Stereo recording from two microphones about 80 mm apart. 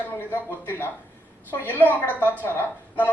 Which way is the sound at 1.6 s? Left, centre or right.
Left.